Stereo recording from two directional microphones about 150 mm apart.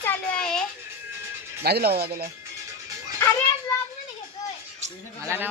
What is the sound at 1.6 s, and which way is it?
Speech, 90° right.